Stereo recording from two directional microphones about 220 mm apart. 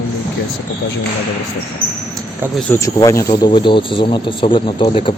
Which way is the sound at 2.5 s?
10° left (ahead or behind).